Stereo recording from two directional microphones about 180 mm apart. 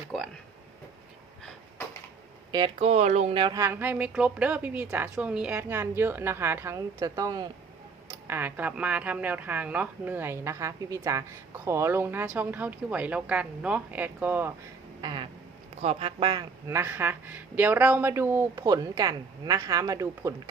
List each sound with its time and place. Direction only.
2.5 s speech: 25° right (ahead or behind)
3.6 s a woman's voice: 10° right (ahead or behind)
15.0 s a sound: 25° right (ahead or behind)
15.8 s a woman's voice: 35° right (ahead or behind); by 20.3 s 20° right (ahead or behind)